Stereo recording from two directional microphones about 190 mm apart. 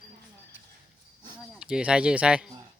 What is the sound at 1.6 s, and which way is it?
Speech, 5° right (ahead or behind).